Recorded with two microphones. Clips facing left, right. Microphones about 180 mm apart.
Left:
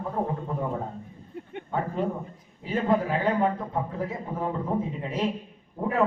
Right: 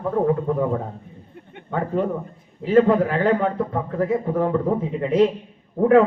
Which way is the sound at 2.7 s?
70° right (ahead or behind).